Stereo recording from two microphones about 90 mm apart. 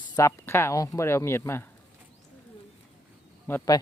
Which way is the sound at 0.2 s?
30° left (ahead or behind).